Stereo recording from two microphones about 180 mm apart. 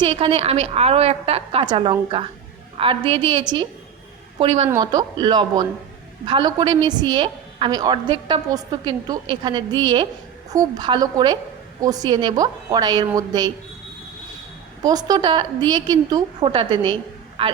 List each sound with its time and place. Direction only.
0.0 s a woman's voice: 30° right (ahead or behind)
4.7 s a woman's voice: 20° right (ahead or behind)
14.8 s a woman's voice: 20° right (ahead or behind)